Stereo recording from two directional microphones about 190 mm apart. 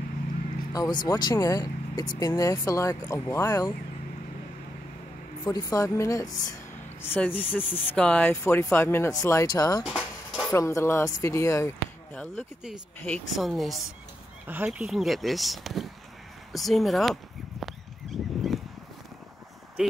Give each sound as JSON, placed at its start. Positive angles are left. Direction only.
{"t": 0.7, "sound": "speech", "side_deg": 20}
{"t": 5.4, "sound": "speech", "side_deg": 20}
{"t": 9.8, "sound": "stir", "side_deg": 0}
{"t": 10.5, "sound": "speech", "side_deg": 15}
{"t": 13.0, "sound": "speech", "side_deg": 5}
{"t": 16.5, "sound": "a sound", "side_deg": 0}
{"t": 19.8, "sound": "speech", "side_deg": -5}